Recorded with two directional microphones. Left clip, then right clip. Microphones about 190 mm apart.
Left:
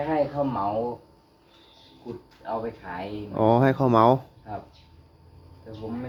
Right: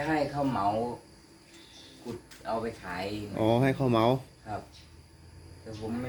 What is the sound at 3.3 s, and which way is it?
Speech, 25° left (ahead or behind).